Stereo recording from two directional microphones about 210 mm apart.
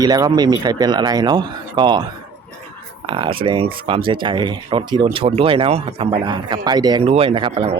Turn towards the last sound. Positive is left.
turn(degrees=-25)  # may be behind; listen again after turning